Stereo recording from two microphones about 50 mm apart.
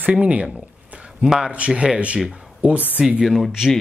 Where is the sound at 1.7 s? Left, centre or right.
Right.